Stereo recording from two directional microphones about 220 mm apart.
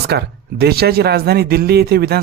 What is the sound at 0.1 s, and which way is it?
Speech, 50° right (ahead or behind).